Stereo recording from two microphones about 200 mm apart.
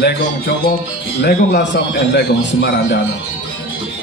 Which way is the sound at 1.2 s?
60° left (ahead or behind).